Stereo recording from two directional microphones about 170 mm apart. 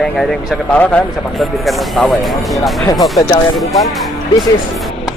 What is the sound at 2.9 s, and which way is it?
Speech, 20° left (ahead or behind).